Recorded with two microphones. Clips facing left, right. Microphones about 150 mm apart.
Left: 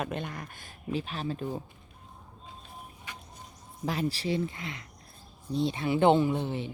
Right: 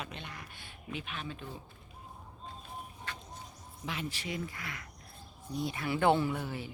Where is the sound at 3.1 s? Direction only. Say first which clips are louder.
Even; 15° left (ahead or behind).